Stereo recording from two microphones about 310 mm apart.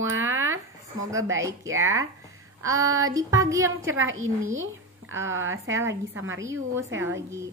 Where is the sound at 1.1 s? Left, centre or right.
Centre.